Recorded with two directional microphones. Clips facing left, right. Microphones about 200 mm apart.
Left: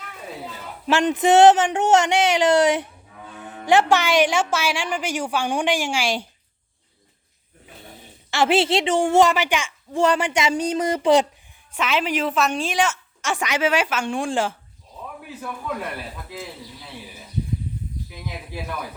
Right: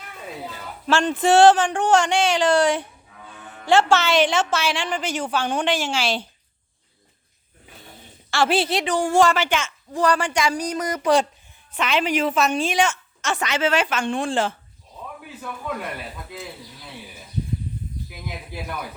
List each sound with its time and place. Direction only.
0.9 s a woman's voice: 15° left (ahead or behind)
8.3 s speech: 20° left (ahead or behind)
9.9 s speech: 25° left (ahead or behind)
11.7 s a woman's voice: 5° left (ahead or behind)